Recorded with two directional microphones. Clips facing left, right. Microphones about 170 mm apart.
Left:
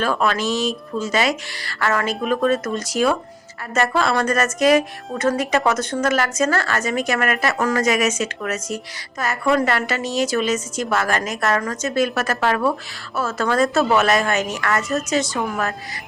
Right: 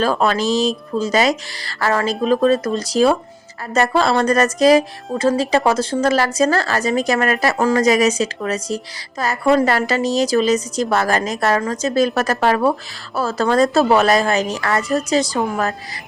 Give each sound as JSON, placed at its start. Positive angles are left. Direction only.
{"t": 0.0, "sound": "a woman's voice", "side_deg": -35}